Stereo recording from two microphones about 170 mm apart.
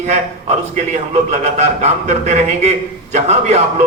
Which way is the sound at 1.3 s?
40° right (ahead or behind).